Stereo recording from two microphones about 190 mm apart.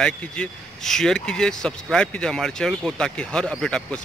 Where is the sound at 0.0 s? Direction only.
5° left (ahead or behind).